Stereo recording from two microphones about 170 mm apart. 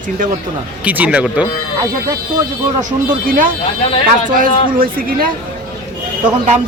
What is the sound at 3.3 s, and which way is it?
A woman's voice, 55° right (ahead or behind).